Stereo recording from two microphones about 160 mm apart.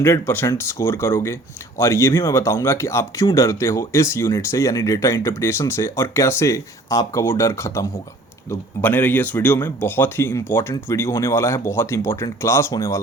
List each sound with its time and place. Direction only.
0.0 s speech: 15° left (ahead or behind)